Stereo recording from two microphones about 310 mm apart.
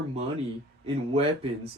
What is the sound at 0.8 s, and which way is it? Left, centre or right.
Speech, centre.